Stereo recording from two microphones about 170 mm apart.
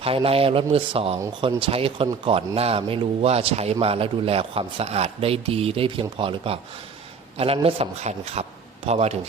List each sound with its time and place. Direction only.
0.0 s a man's voice: 35° right (ahead or behind)